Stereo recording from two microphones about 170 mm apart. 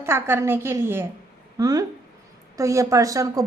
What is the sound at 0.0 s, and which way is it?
A woman's voice, 15° right (ahead or behind).